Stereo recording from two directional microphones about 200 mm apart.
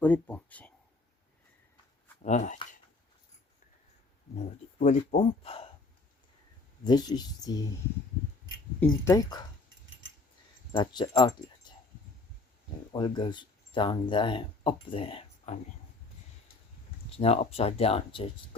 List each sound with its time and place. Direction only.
0.0 s speech: 5° left (ahead or behind)
2.2 s speech: 35° left (ahead or behind)
4.4 s speech: 35° left (ahead or behind)
6.8 s speech: 20° left (ahead or behind)
8.8 s speech: 15° left (ahead or behind)
10.7 s speech: 25° left (ahead or behind)
12.9 s speech: 20° left (ahead or behind)
17.1 s speech: 30° left (ahead or behind)